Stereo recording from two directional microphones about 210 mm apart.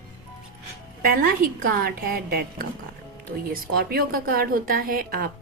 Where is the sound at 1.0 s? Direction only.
45° right (ahead or behind).